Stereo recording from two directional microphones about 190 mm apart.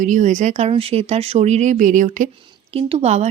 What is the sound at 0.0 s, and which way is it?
A woman's voice, 40° right (ahead or behind).